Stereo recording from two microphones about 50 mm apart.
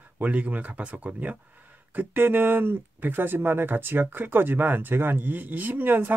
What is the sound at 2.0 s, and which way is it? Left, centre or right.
Speech, right.